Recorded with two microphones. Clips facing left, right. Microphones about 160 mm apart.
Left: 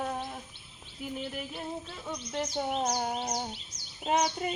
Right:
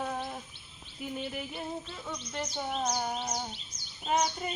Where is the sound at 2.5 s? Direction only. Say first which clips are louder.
Left 2 dB; 15° left (ahead or behind).